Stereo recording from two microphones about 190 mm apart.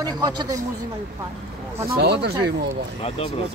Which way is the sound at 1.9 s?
60° right (ahead or behind).